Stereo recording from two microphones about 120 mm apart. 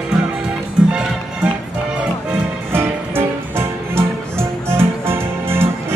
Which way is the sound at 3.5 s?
20° right (ahead or behind).